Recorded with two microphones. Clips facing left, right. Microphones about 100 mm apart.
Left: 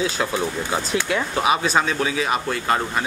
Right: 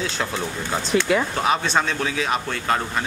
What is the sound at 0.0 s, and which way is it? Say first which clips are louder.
Speech: left 3 dB; 5° left (ahead or behind).